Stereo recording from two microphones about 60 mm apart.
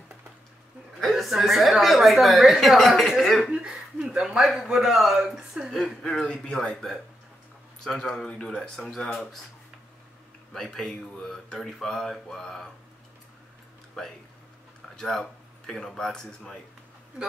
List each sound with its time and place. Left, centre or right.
0.9 s a woman's voice: centre
3.5 s a sound: centre
4.6 s speech: centre
5.8 s speech: centre
10.5 s speech: centre
15.0 s speech: centre